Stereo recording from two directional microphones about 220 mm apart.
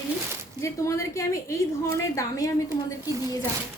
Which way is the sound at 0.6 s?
15° left (ahead or behind).